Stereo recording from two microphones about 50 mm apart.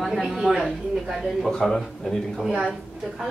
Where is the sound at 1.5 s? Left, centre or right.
Centre.